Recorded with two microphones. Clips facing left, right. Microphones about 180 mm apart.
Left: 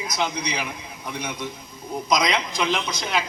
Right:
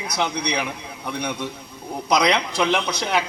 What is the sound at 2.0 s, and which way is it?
A man's voice, 65° right (ahead or behind).